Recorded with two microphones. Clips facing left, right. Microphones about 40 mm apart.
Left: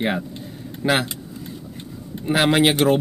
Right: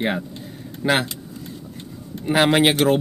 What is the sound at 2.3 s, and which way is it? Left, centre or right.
Speech, centre.